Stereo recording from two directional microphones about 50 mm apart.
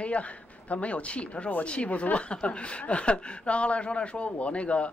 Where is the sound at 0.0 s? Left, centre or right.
Left.